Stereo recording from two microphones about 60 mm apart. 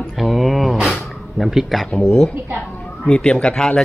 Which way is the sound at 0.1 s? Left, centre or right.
Centre.